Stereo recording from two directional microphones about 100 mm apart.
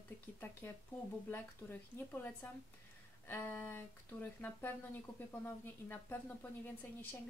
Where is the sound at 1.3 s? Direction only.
20° left (ahead or behind).